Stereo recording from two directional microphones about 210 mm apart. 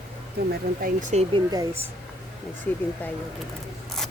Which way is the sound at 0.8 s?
35° right (ahead or behind).